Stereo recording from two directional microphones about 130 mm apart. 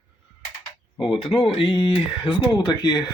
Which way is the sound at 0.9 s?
Centre (ahead or behind).